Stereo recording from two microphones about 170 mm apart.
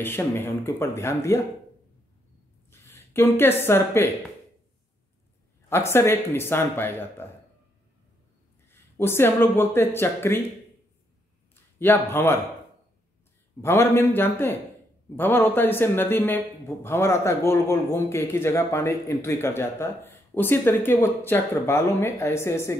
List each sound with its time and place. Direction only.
0.0 s a man's voice: 15° left (ahead or behind)
2.7 s speech: 15° left (ahead or behind)
5.7 s a man's voice: 15° left (ahead or behind)
8.6 s speech: 15° left (ahead or behind)
11.8 s a man's voice: 10° left (ahead or behind)
13.6 s a man's voice: 15° left (ahead or behind)